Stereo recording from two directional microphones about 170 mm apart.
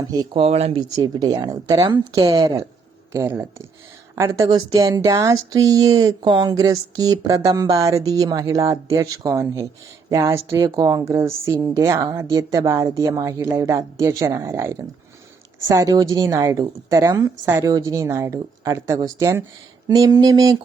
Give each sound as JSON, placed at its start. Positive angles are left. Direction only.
{"t": 0.1, "sound": "speech", "side_deg": -20}
{"t": 0.4, "sound": "speech", "side_deg": -35}
{"t": 0.9, "sound": "a woman's voice", "side_deg": -25}